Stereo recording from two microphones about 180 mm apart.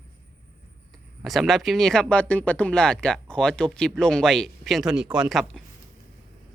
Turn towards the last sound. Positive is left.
turn(degrees=0)  # may be behind; listen again after turning